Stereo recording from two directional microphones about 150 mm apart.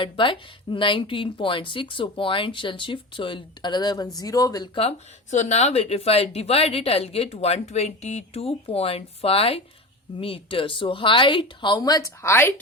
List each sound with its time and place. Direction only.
0.0 s speech: 35° left (ahead or behind); by 12.5 s 15° left (ahead or behind)